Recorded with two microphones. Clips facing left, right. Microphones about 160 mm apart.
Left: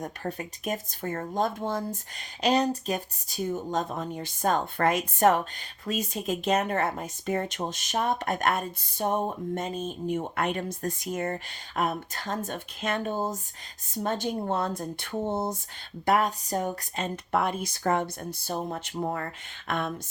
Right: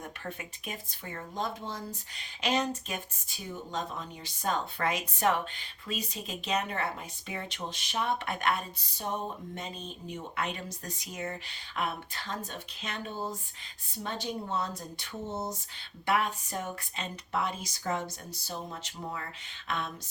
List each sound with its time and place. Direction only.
0.0 s speech: 40° left (ahead or behind); by 15.5 s 55° left (ahead or behind)
16.0 s speech: 40° left (ahead or behind)
17.3 s speech: 55° left (ahead or behind)